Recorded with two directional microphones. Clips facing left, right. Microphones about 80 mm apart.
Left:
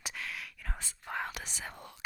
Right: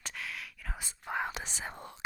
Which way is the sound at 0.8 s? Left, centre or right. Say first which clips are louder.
Right 3 dB; centre.